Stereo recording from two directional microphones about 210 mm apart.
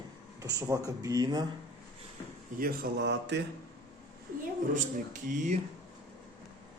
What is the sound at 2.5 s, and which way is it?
Speech, 45° right (ahead or behind).